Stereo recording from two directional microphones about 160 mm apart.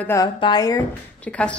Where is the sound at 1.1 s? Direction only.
10° left (ahead or behind).